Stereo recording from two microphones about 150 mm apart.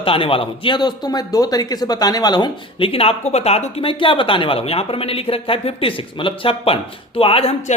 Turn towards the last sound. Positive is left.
turn(degrees=40)  # may be behind; listen again after turning